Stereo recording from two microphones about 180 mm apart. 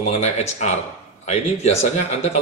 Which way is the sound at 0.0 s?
35° left (ahead or behind).